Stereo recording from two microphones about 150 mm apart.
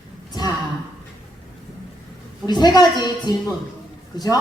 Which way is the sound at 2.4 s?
30° left (ahead or behind).